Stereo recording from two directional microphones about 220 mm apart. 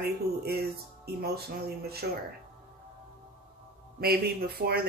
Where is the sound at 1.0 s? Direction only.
45° right (ahead or behind).